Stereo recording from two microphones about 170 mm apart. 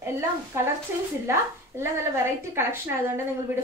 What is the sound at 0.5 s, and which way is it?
A woman's voice, 15° right (ahead or behind).